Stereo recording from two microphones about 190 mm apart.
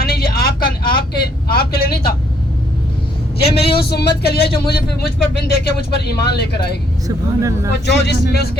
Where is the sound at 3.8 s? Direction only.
55° left (ahead or behind).